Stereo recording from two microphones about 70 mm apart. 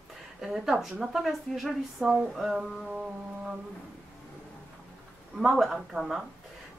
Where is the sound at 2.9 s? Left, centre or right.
Centre.